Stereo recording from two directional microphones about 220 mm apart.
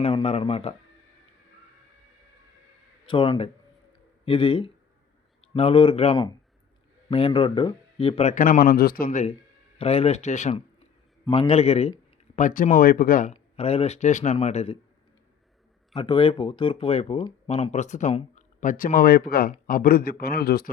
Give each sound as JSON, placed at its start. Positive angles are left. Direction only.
{"t": 0.0, "sound": "speech", "side_deg": 25}
{"t": 3.1, "sound": "speech", "side_deg": 20}
{"t": 9.0, "sound": "speech", "side_deg": 30}
{"t": 16.0, "sound": "speech", "side_deg": 25}